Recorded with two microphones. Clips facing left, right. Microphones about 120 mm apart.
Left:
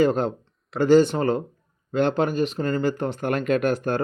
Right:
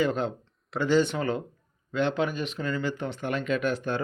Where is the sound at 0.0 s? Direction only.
40° left (ahead or behind).